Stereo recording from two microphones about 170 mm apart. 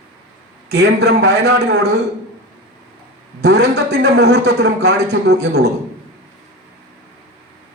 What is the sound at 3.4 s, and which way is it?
A man's voice, 80° right.